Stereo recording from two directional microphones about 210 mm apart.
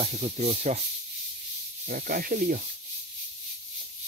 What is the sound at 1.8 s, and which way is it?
Speech, 45° right (ahead or behind).